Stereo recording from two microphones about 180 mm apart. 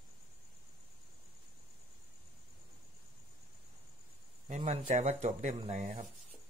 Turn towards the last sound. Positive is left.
turn(degrees=-40)  # may be behind; listen again after turning